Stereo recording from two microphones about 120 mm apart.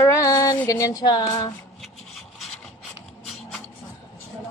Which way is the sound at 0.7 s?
30° left (ahead or behind).